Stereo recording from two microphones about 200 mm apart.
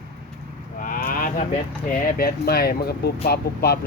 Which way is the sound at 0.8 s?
45° left (ahead or behind).